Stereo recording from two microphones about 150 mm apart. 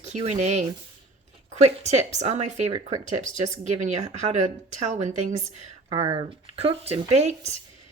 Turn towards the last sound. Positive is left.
turn(degrees=-45)  # may be behind; listen again after turning